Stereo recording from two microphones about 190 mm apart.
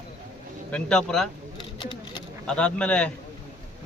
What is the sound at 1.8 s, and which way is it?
Speech, 25° left (ahead or behind).